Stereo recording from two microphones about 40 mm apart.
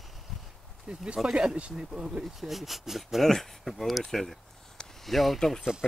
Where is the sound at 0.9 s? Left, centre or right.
Right.